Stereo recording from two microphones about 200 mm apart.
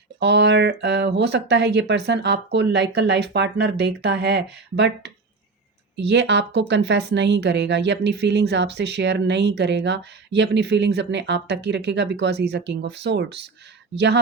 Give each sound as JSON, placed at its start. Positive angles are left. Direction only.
{"t": 0.2, "sound": "speech", "side_deg": -60}